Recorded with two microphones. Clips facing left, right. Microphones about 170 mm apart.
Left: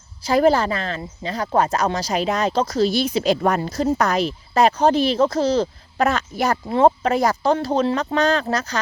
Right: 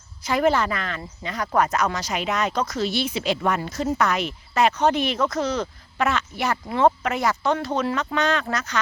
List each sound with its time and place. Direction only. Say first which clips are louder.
0.2 s speech: left 4 dB; 35° left (ahead or behind)